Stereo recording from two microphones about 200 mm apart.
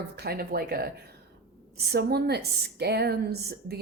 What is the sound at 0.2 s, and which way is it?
A woman's voice, 50° right (ahead or behind).